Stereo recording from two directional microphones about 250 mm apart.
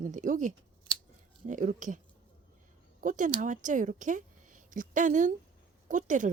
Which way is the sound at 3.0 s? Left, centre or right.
Right.